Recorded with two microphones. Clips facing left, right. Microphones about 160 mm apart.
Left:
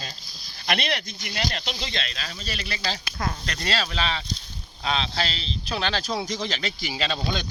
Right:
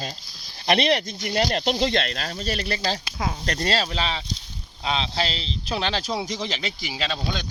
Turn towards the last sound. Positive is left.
turn(degrees=0)  # may be behind; listen again after turning